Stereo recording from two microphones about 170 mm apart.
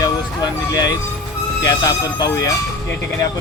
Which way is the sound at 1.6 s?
20° left (ahead or behind).